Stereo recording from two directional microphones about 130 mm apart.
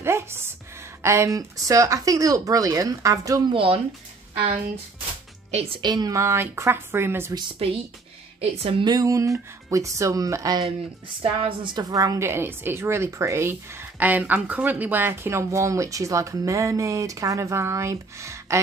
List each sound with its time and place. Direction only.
0.0 s a sound: 20° right (ahead or behind)
1.0 s a woman's voice: 20° right (ahead or behind)
3.4 s a woman's voice: 45° right (ahead or behind)
5.5 s speech: 55° right (ahead or behind)
5.8 s a woman's voice: 30° right (ahead or behind)
7.5 s a woman's voice: 50° right (ahead or behind)
8.8 s a woman's voice: 30° right (ahead or behind)
11.2 s a woman's voice: 40° right (ahead or behind)
11.9 s a woman's voice: 25° right (ahead or behind)